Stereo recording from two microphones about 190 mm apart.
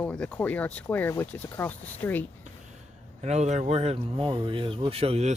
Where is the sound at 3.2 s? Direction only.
35° right (ahead or behind).